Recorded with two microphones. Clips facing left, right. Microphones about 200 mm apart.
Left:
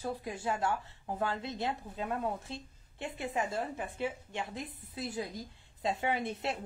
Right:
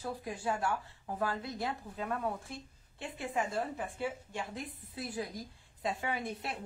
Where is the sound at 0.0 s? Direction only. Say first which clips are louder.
Left 1 dB; 20° left (ahead or behind).